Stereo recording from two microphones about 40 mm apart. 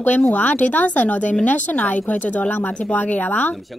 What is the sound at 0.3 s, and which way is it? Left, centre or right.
Speech, left.